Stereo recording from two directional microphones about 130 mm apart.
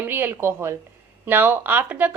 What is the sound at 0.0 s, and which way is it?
A woman's voice, 15° right (ahead or behind).